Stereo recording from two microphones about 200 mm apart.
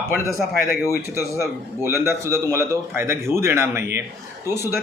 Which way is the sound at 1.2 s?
15° left (ahead or behind).